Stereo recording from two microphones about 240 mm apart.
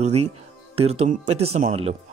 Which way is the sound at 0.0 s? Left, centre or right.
Right.